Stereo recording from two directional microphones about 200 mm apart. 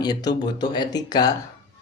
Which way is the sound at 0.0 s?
20° left (ahead or behind).